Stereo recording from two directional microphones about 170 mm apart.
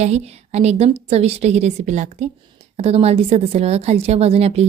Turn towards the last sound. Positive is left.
turn(degrees=-40)  # may be behind; listen again after turning